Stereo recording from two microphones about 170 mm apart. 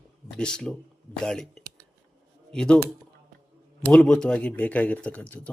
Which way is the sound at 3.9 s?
5° left (ahead or behind).